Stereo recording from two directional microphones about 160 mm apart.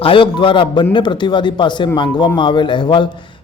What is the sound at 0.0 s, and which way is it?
A man's voice, 30° left (ahead or behind).